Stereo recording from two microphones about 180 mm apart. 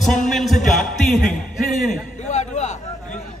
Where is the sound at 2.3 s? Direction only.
40° left (ahead or behind).